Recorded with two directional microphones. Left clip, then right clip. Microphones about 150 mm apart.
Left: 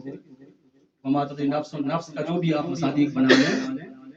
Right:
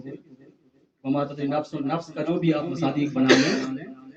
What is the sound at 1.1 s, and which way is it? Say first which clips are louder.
Speech: left 1 dB; 45° right (ahead or behind).